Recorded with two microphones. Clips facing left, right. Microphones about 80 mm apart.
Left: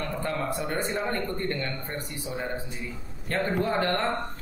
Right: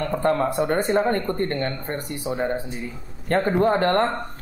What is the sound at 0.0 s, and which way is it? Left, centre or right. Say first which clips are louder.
Speech: right 9 dB; right.